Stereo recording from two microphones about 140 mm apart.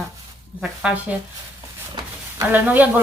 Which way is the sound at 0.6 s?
10° right (ahead or behind).